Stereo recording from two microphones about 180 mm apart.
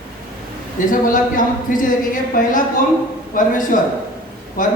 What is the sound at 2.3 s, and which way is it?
Speech, 50° left (ahead or behind).